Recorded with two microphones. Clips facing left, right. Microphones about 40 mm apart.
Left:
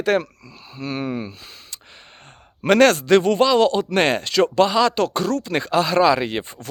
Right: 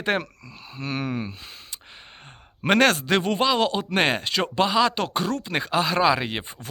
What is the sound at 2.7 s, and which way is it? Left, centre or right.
Speech, centre.